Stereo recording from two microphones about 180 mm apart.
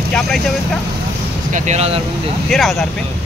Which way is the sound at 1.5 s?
40° right (ahead or behind).